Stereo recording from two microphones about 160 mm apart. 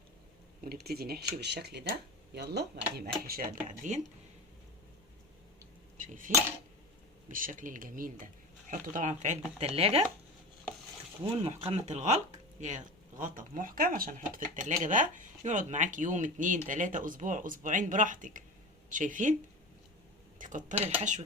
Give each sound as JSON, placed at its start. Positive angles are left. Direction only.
{"t": 0.6, "sound": "speech", "side_deg": -75}
{"t": 6.0, "sound": "cutlery", "side_deg": -55}
{"t": 7.3, "sound": "speech", "side_deg": -55}
{"t": 11.2, "sound": "speech", "side_deg": -35}
{"t": 20.4, "sound": "speech", "side_deg": -55}
{"t": 20.7, "sound": "speech", "side_deg": -10}